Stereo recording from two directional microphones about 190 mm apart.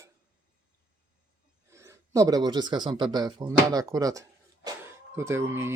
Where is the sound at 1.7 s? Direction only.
15° right (ahead or behind).